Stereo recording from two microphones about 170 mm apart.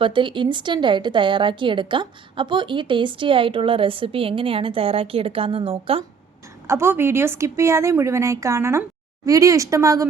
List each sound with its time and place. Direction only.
0.0 s a woman's voice: 30° right (ahead or behind)
6.7 s a woman's voice: 15° right (ahead or behind)